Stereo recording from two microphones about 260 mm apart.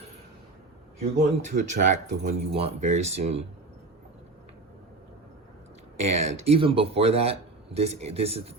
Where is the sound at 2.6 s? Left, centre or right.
Right.